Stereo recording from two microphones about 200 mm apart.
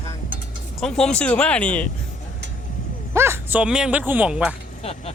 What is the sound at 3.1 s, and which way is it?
Speech, 10° right (ahead or behind).